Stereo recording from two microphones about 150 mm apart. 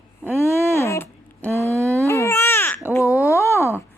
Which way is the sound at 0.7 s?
15° left (ahead or behind).